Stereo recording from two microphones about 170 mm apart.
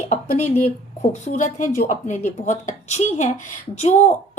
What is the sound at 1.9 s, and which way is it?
A woman's voice, 45° left (ahead or behind).